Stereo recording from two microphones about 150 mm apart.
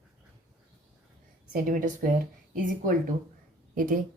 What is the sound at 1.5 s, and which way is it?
A woman's voice, 60° right (ahead or behind).